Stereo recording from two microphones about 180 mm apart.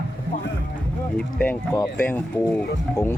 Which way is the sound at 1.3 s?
15° left (ahead or behind).